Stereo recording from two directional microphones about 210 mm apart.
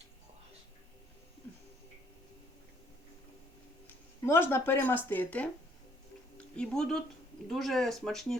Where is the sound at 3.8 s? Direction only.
10° left (ahead or behind).